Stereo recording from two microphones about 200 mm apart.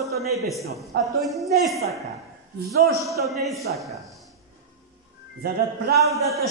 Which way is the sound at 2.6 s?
50° right (ahead or behind).